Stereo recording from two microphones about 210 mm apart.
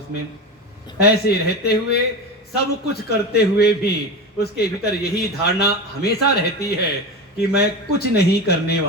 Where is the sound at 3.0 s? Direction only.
50° left (ahead or behind).